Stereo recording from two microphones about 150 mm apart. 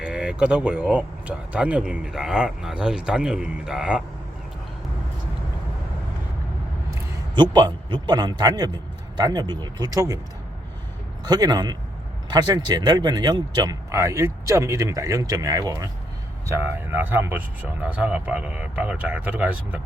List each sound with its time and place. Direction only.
0.0 s speech: 5° right (ahead or behind)
7.3 s speech: 30° right (ahead or behind)
11.2 s speech: 25° right (ahead or behind); by 19.8 s 10° right (ahead or behind)